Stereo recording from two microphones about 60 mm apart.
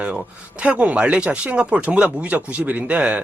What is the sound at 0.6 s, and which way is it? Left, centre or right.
Speech, right.